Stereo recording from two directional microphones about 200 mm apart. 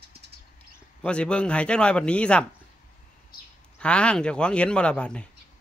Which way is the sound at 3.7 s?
5° left (ahead or behind).